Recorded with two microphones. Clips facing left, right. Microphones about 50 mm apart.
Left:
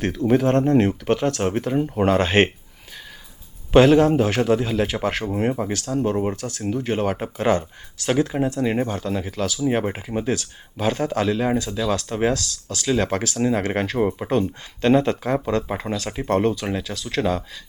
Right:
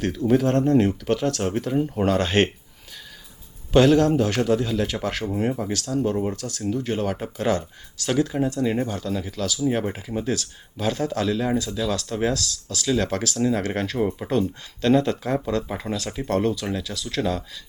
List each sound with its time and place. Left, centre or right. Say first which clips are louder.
0.3 s speech: left 1 dB; centre
3.7 s speech: left 3 dB; left